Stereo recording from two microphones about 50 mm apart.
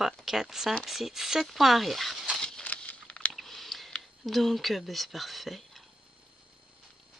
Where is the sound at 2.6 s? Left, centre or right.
Left.